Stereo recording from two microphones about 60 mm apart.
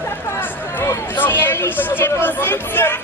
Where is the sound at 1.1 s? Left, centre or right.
Left.